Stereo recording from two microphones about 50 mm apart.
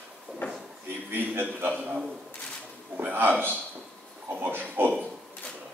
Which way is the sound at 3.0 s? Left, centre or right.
Right.